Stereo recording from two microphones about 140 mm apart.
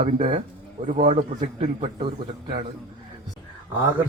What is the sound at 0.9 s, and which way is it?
A man's voice, 45° right (ahead or behind).